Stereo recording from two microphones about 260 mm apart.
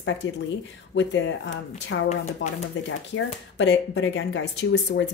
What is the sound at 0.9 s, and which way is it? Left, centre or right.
Speech, left.